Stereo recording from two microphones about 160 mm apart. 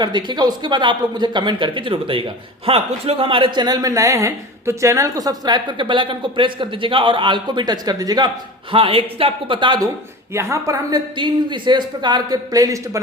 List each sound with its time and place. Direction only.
0.0 s speech: 25° right (ahead or behind)